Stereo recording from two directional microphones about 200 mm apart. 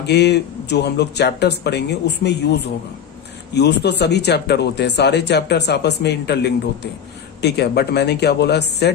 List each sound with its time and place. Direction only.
0.0 s speech: 55° left (ahead or behind)